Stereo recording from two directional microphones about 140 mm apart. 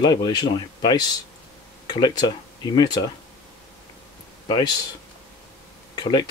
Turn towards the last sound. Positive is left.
turn(degrees=30)  # may be behind; listen again after turning